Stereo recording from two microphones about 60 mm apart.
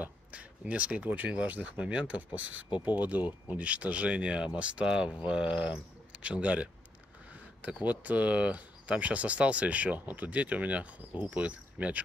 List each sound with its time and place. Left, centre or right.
0.0 s speech: right